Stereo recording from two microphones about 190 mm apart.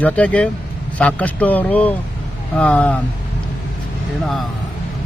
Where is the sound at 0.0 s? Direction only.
5° left (ahead or behind).